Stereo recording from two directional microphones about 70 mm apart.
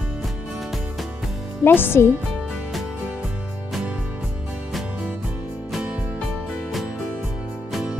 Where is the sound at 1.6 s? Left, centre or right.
Left.